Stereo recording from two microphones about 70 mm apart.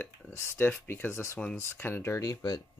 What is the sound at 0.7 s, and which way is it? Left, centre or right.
Speech, left.